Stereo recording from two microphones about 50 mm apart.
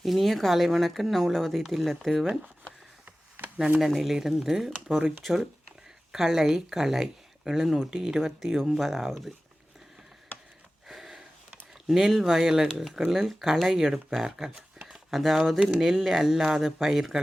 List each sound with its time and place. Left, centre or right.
0.0 s speech: centre
3.4 s a sound: right
3.8 s speech: centre
6.1 s speech: centre
10.8 s sniff: centre
11.9 s speech: centre